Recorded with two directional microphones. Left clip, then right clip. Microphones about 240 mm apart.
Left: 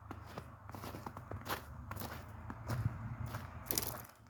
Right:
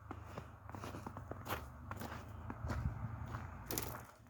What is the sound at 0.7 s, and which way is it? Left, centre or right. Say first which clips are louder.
Walk: left 1 dB; centre.